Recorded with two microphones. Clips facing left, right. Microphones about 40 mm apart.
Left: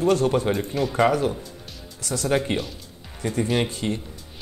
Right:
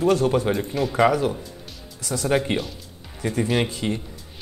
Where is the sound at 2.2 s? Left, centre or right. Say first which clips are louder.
Right 1 dB; centre.